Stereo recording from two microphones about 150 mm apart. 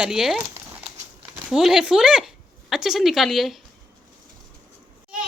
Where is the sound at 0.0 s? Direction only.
5° right (ahead or behind).